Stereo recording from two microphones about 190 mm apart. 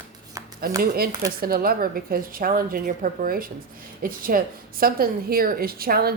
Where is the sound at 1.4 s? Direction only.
50° right (ahead or behind).